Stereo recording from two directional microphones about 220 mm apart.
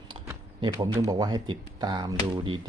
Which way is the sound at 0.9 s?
15° right (ahead or behind).